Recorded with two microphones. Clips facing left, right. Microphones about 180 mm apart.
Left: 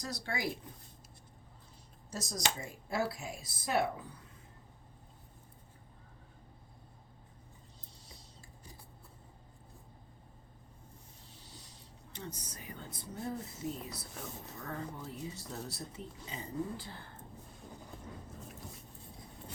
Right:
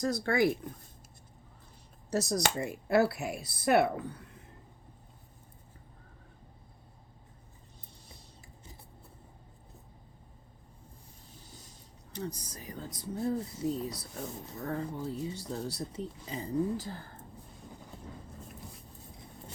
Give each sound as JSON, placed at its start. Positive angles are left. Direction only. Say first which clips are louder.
{"t": 0.0, "sound": "speech", "louder": "right 11 dB", "side_deg": -50}
{"t": 2.0, "sound": "speech", "louder": "right 8 dB", "side_deg": -70}
{"t": 11.4, "sound": "mechanisms", "louder": "right 1 dB", "side_deg": -45}
{"t": 12.1, "sound": "speech", "louder": "right 7 dB", "side_deg": -35}